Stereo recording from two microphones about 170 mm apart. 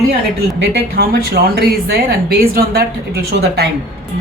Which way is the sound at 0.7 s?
70° right (ahead or behind).